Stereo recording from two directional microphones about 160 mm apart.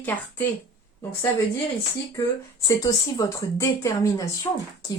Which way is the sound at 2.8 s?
25° left (ahead or behind).